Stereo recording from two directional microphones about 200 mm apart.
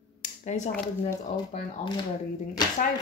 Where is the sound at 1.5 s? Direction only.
30° left (ahead or behind).